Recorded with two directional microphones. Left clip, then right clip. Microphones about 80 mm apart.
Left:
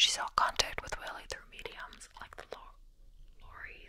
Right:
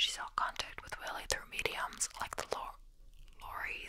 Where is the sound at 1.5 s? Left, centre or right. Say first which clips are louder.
Right 8 dB; right.